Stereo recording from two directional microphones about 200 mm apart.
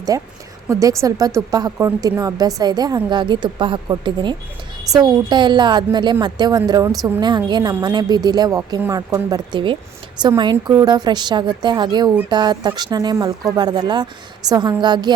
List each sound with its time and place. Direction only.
0.1 s a woman's voice: 15° right (ahead or behind)